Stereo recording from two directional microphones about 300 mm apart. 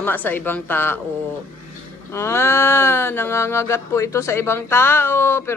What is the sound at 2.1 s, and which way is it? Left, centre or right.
Speech, centre.